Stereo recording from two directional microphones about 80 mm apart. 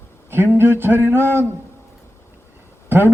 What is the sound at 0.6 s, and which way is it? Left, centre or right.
Speech, right.